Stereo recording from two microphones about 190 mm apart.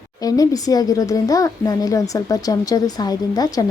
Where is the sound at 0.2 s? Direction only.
20° left (ahead or behind).